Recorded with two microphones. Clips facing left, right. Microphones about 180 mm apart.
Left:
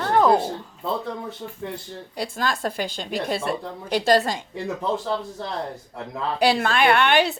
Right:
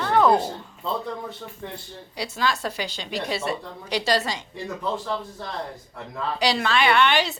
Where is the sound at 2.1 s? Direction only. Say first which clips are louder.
Even; 50° left (ahead or behind).